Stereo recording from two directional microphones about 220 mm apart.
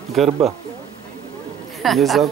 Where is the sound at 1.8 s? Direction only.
Centre (ahead or behind).